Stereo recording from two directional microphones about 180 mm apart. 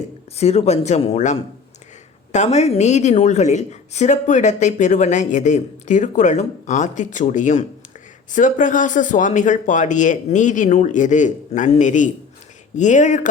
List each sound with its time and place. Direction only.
0.3 s speech: 35° left (ahead or behind)